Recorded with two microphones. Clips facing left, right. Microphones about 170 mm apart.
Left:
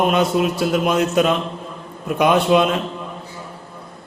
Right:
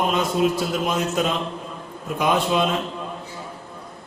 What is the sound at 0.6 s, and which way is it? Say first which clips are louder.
A man's voice: left 6 dB; 65° left (ahead or behind).